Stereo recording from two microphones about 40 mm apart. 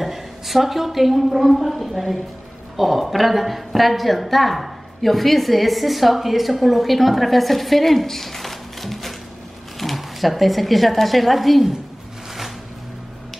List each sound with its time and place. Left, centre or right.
0.0 s a woman's voice: centre